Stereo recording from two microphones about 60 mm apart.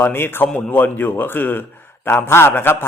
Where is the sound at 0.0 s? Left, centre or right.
Left.